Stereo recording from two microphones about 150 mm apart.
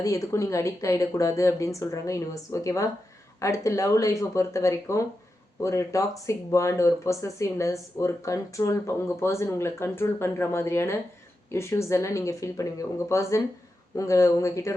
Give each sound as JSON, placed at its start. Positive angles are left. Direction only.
{"t": 0.0, "sound": "speech", "side_deg": 20}